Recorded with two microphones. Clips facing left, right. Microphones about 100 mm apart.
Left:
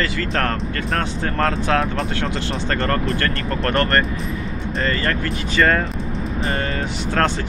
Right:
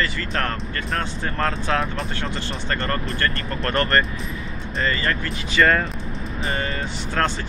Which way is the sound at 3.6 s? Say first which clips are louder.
Left 2 dB; 40° left (ahead or behind).